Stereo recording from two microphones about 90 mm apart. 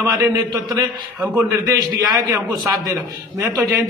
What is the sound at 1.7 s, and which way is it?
A man's voice, 45° right (ahead or behind).